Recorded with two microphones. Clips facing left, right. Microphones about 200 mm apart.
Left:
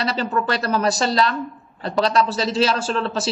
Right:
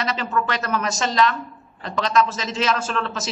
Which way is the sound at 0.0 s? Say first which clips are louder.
Left 2 dB; 35° left (ahead or behind).